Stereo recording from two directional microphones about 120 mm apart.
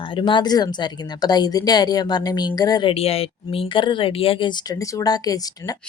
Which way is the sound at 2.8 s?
55° left (ahead or behind).